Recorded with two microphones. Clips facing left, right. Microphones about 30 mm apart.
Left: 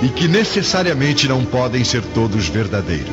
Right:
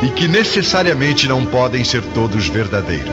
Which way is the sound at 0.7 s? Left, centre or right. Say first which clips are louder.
Right 2 dB; centre.